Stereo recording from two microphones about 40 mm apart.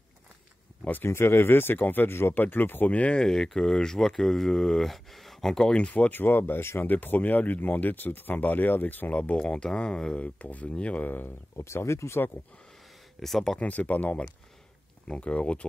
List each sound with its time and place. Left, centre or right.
1.0 s speech: left
2.3 s speech: left
2.9 s speech: left
3.2 s speech: centre
5.6 s speech: left
6.0 s speech: left
6.8 s speech: left
9.3 s speech: left
10.2 s speech: left
11.1 s speech: left
13.2 s speech: centre
13.6 s speech: left
15.0 s speech: left